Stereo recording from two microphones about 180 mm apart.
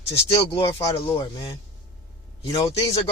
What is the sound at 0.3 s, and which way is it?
Speech, 20° left (ahead or behind).